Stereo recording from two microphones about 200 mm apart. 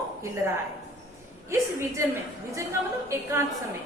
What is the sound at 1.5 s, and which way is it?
Speech, 15° right (ahead or behind).